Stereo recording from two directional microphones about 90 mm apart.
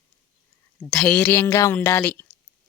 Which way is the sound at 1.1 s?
20° left (ahead or behind).